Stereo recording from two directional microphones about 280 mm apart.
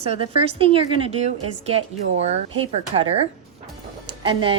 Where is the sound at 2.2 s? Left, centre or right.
Right.